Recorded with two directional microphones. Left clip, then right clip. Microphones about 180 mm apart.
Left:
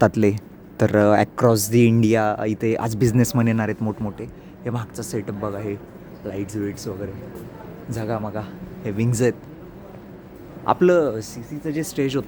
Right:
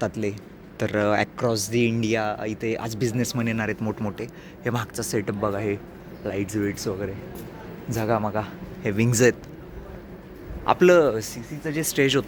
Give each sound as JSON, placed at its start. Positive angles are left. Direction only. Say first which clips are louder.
{"t": 0.0, "sound": "a man's voice", "louder": "left 9 dB", "side_deg": 55}
{"t": 0.8, "sound": "speech", "louder": "left 6 dB", "side_deg": 40}
{"t": 1.4, "sound": "speech", "louder": "left 6 dB", "side_deg": 55}
{"t": 3.8, "sound": "a man's voice", "louder": "left 1 dB", "side_deg": 10}
{"t": 4.7, "sound": "speech", "louder": "right 2 dB", "side_deg": -5}
{"t": 8.9, "sound": "speech", "louder": "right 2 dB", "side_deg": 0}
{"t": 10.7, "sound": "speech", "louder": "even", "side_deg": 20}
{"t": 10.9, "sound": "speech", "louder": "right 1 dB", "side_deg": 5}